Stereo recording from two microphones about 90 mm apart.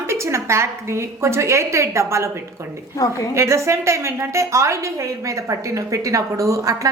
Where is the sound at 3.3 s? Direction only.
35° right (ahead or behind).